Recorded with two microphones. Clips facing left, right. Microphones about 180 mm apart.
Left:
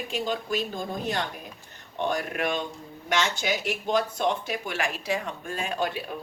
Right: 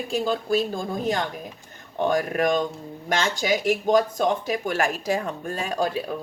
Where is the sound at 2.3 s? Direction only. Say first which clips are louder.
Right 6 dB; 40° right (ahead or behind).